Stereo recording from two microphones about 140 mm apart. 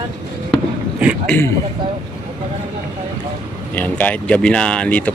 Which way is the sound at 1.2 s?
10° left (ahead or behind).